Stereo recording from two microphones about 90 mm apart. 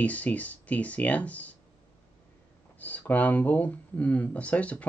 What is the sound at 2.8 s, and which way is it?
Speech, 20° left (ahead or behind).